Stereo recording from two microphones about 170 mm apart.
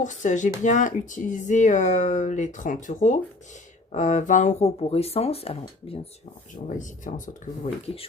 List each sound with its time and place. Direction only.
0.0 s speech: 45° left (ahead or behind)
6.7 s speech: 50° left (ahead or behind)